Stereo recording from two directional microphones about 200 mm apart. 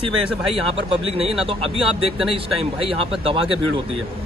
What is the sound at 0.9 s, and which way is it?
Speech, 30° right (ahead or behind).